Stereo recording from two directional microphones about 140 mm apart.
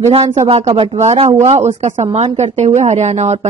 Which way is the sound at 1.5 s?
55° right (ahead or behind).